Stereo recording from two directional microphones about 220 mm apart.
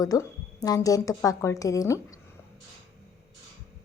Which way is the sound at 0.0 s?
15° left (ahead or behind).